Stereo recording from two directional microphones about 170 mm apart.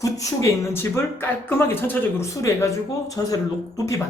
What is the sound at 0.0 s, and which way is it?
Speech, 20° left (ahead or behind).